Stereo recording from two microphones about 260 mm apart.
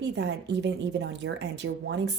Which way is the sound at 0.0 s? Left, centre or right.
Right.